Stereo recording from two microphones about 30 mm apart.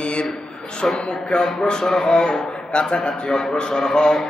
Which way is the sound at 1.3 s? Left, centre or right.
Left.